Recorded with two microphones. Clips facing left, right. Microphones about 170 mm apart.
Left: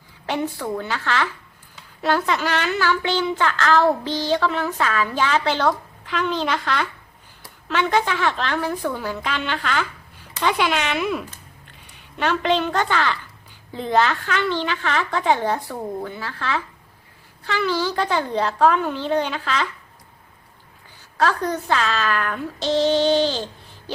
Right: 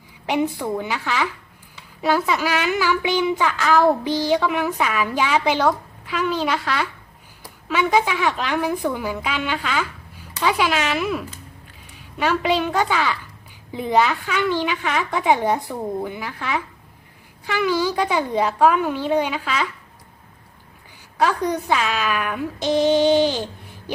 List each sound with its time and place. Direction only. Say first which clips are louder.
0.3 s a woman's voice: right 3 dB; 15° right (ahead or behind)
21.2 s a woman's voice: right 1 dB; 10° right (ahead or behind)